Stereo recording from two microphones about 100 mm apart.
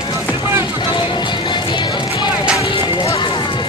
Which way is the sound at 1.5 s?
50° left (ahead or behind).